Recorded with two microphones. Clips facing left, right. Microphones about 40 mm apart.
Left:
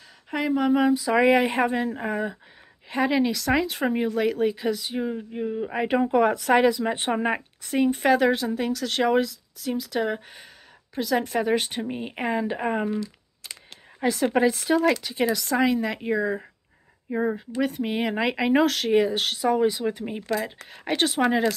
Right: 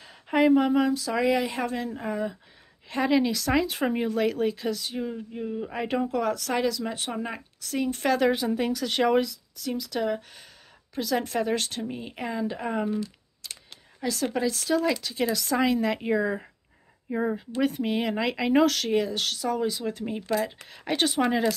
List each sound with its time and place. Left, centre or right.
0.5 s speech: centre
0.7 s speech: centre
1.2 s a woman's voice: left
2.9 s speech: centre; by 7.9 s left
7.9 s speech: centre
8.3 s a woman's voice: centre
15.3 s speech: centre
17.8 s speech: centre
18.9 s speech: centre